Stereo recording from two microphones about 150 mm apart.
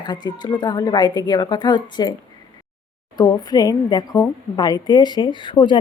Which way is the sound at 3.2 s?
25° left (ahead or behind).